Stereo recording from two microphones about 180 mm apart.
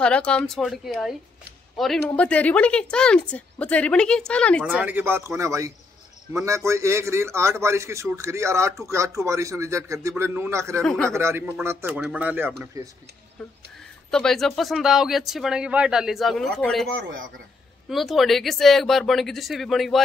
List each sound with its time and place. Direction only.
0.0 s speech: 5° left (ahead or behind)
4.6 s a man's voice: 10° right (ahead or behind)
10.8 s speech: 5° left (ahead or behind)
11.1 s a man's voice: 15° right (ahead or behind)
14.1 s speech: centre (ahead or behind)